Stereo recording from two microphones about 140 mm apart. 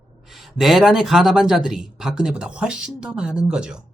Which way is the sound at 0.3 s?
Centre (ahead or behind).